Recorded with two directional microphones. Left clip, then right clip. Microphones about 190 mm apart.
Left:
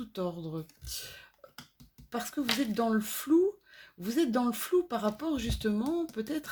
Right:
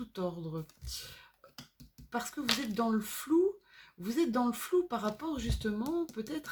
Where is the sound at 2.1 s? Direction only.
35° left (ahead or behind).